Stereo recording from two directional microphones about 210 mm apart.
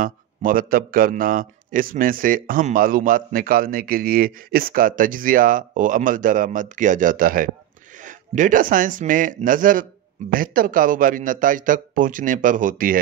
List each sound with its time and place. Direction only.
0.0 s a man's voice: 40° right (ahead or behind)